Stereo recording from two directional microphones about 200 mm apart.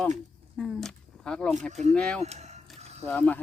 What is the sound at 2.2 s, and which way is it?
Speech, 35° right (ahead or behind).